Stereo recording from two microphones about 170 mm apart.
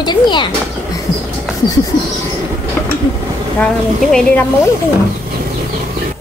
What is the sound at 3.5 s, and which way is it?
Speech, 5° left (ahead or behind).